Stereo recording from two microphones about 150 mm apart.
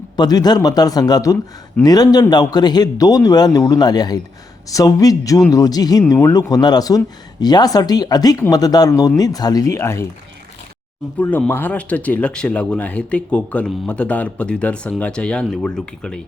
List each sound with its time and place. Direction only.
0.2 s speech: 25° left (ahead or behind)
11.2 s speech: 10° left (ahead or behind)